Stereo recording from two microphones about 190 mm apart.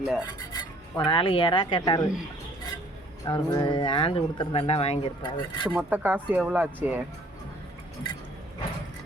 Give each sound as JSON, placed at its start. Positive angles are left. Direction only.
{"t": 0.2, "sound": "speech", "side_deg": 20}
{"t": 3.2, "sound": "speech", "side_deg": 25}
{"t": 5.7, "sound": "speech", "side_deg": -10}